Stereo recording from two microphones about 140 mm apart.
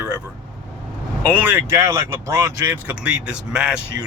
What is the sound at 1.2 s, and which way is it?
Speech, 15° right (ahead or behind).